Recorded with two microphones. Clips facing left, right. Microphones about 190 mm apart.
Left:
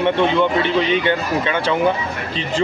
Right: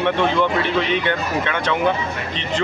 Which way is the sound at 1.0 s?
30° left (ahead or behind).